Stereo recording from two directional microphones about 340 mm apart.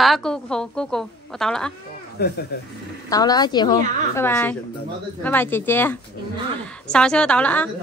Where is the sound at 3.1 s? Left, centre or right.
Centre.